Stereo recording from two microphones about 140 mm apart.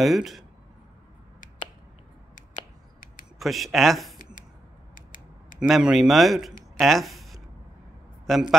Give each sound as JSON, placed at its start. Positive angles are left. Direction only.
{"t": 0.0, "sound": "speech", "side_deg": 0}
{"t": 3.3, "sound": "speech", "side_deg": 0}
{"t": 4.9, "sound": "scissors", "side_deg": 70}
{"t": 5.6, "sound": "speech", "side_deg": -5}